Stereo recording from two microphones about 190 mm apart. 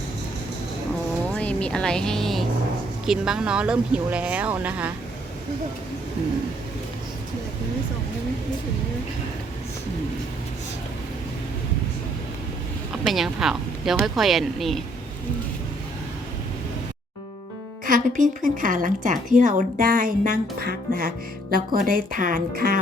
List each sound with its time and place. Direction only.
1.4 s speech: 5° left (ahead or behind)
13.1 s speech: centre (ahead or behind)
17.8 s speech: 45° right (ahead or behind)